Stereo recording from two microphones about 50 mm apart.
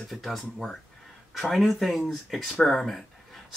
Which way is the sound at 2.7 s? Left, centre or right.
Centre.